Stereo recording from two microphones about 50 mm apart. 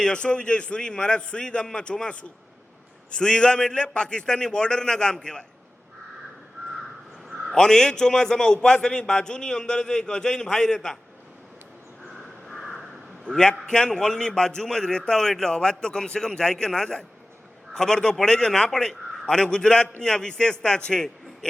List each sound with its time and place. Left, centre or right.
0.0 s a man's voice: centre
7.5 s a man's voice: centre
12.5 s a sound: centre
13.2 s a man's voice: centre